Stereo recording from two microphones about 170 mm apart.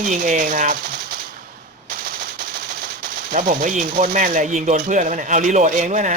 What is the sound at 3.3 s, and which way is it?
Speech, 50° right (ahead or behind).